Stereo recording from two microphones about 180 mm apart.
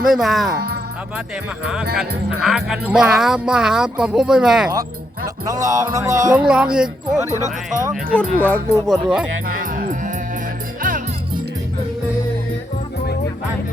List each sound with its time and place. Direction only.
0.1 s speech: centre (ahead or behind)
1.6 s speech: 5° right (ahead or behind)
5.5 s music: 20° right (ahead or behind)
6.5 s speech: 5° right (ahead or behind)
8.1 s speech: 10° left (ahead or behind)
8.9 s speech: 5° right (ahead or behind)
9.5 s music: 50° right (ahead or behind)